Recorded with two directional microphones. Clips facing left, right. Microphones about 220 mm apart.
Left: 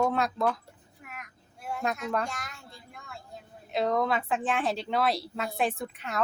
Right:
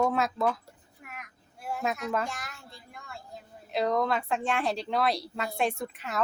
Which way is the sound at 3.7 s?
Centre (ahead or behind).